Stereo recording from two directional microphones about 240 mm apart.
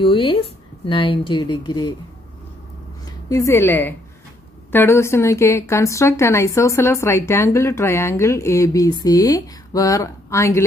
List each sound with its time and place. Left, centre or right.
0.0 s a woman's voice: left
3.1 s a woman's voice: centre